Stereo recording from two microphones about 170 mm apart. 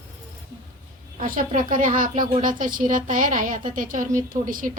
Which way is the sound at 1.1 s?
50° right (ahead or behind).